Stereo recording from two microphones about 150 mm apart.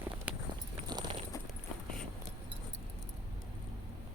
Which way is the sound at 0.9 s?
30° right (ahead or behind).